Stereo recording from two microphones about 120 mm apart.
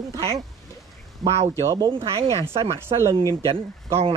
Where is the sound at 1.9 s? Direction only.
45° right (ahead or behind).